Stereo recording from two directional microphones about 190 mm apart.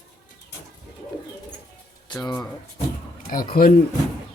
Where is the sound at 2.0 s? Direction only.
20° left (ahead or behind).